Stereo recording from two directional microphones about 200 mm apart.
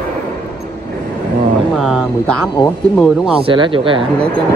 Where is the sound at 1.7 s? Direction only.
Centre (ahead or behind).